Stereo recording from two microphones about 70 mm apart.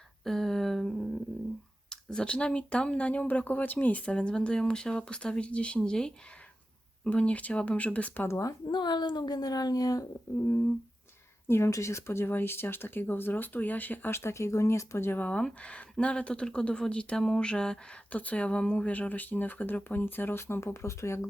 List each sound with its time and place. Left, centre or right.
0.3 s a sound: centre
1.9 s speech: centre
8.3 s speech: left
8.7 s a child's voice: left
10.3 s humming: left
11.4 s speech: left
14.1 s speech: left